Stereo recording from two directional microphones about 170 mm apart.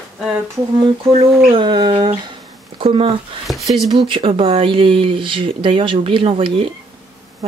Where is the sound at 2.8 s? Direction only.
35° right (ahead or behind).